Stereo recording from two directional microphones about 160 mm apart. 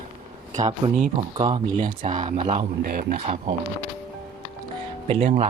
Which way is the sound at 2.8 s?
60° right (ahead or behind).